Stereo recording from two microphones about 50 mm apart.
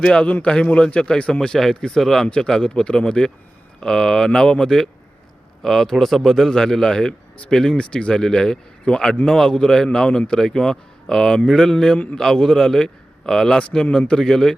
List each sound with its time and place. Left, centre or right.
0.0 s a man's voice: centre
2.2 s a man's voice: centre
13.6 s a man's voice: left